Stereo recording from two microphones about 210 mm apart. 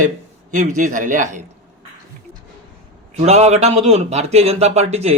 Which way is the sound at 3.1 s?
30° right (ahead or behind).